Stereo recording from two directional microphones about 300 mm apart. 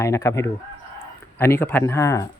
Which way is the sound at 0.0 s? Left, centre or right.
Centre.